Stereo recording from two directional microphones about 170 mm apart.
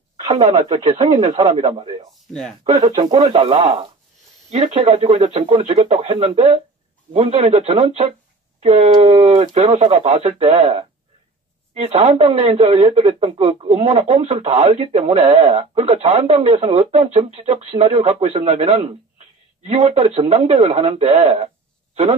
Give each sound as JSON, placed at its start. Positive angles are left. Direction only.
{"t": 0.8, "sound": "speech", "side_deg": -40}
{"t": 1.7, "sound": "a man's voice", "side_deg": -30}
{"t": 3.0, "sound": "speech", "side_deg": -30}